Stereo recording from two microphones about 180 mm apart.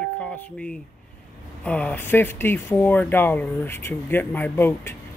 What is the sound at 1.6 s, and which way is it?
Speech, 5° left (ahead or behind).